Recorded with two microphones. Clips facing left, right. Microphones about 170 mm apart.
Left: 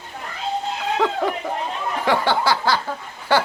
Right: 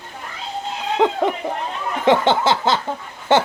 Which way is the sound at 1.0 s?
20° right (ahead or behind).